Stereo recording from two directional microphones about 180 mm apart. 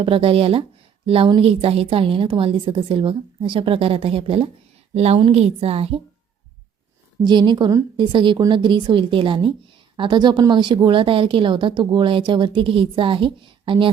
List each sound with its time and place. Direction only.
0.0 s a woman's voice: 30° right (ahead or behind)
7.3 s a woman's voice: 25° right (ahead or behind)